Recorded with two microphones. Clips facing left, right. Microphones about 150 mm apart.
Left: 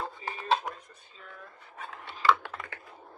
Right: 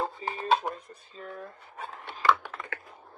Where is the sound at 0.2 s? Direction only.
35° right (ahead or behind).